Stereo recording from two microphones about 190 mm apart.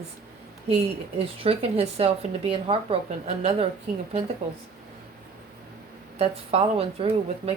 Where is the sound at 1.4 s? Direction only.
30° right (ahead or behind).